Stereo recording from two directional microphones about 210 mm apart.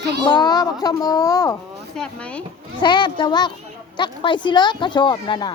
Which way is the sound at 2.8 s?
20° left (ahead or behind).